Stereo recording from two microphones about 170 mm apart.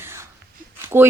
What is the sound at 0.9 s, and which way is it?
Speech, 15° right (ahead or behind).